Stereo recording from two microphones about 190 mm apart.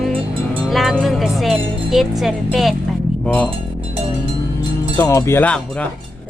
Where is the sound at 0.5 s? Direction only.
Centre (ahead or behind).